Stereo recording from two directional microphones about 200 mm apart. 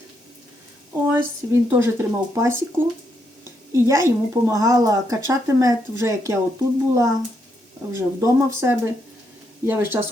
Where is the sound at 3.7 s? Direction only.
15° right (ahead or behind).